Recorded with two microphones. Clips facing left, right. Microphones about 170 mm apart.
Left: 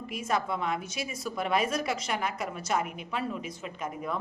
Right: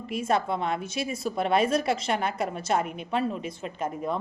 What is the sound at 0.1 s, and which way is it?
A woman's voice, 30° right (ahead or behind).